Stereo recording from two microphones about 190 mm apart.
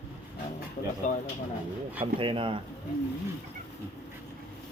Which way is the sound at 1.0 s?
40° left (ahead or behind).